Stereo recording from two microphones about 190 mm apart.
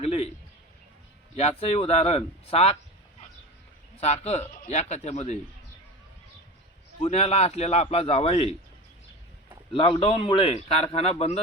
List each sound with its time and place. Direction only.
0.0 s a man's voice: 30° left (ahead or behind)
1.4 s a man's voice: 35° left (ahead or behind)
4.0 s a man's voice: 35° left (ahead or behind)
7.0 s a man's voice: 35° left (ahead or behind)
9.7 s speech: 30° left (ahead or behind)